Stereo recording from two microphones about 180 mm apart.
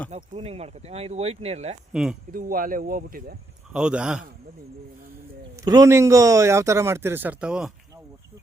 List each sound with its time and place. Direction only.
0.1 s speech: 35° right (ahead or behind)
1.9 s a man's voice: 5° right (ahead or behind)
2.3 s speech: 50° right (ahead or behind)
3.7 s a man's voice: 5° right (ahead or behind)
5.6 s speech: 20° right (ahead or behind)